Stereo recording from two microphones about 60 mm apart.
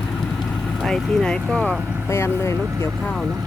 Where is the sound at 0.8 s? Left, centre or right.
Centre.